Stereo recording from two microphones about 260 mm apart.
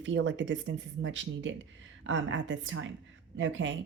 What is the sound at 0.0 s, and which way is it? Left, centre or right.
Speech, right.